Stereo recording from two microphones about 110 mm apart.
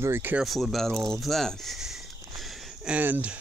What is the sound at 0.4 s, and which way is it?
Speech, centre (ahead or behind).